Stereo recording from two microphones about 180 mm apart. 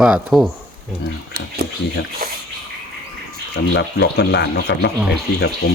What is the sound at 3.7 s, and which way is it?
Speech, 75° left (ahead or behind).